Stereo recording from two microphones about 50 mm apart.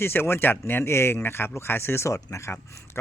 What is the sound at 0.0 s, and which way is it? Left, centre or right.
Speech, left.